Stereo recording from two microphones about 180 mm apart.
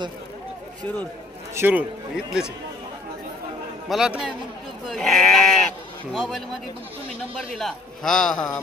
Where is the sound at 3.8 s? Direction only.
5° right (ahead or behind).